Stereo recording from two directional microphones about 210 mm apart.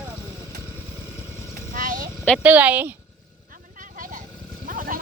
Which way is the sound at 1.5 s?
40° right (ahead or behind).